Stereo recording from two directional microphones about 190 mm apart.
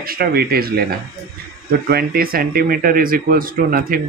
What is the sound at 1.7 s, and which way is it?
Speech, 50° right (ahead or behind).